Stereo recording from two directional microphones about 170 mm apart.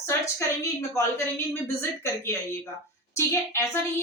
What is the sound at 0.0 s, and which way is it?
A woman's voice, 15° left (ahead or behind).